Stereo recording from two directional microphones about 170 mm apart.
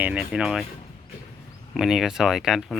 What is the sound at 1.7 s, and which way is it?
Speech, 5° right (ahead or behind).